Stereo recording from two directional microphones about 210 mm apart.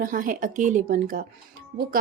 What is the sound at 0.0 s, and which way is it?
Speech, 40° right (ahead or behind).